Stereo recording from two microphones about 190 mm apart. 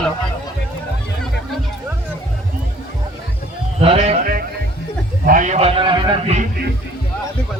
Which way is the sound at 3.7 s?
30° right (ahead or behind).